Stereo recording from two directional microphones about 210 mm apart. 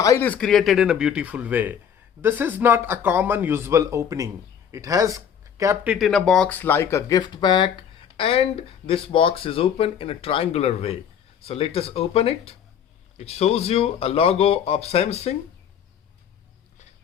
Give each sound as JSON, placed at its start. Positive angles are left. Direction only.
{"t": 0.0, "sound": "speech", "side_deg": 10}